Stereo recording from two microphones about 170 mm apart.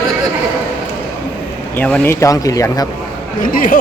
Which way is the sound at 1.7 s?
10° left (ahead or behind).